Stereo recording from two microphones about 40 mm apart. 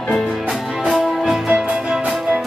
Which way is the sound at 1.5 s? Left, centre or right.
Right.